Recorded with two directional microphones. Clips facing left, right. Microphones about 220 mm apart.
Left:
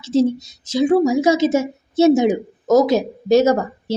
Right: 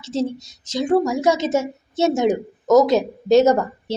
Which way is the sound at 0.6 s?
5° left (ahead or behind).